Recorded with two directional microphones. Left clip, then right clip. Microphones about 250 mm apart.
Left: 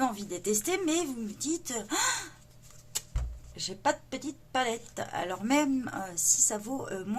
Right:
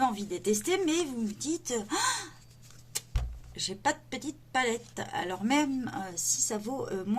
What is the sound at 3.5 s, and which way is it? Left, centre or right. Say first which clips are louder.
A woman's voice: left 1 dB; centre.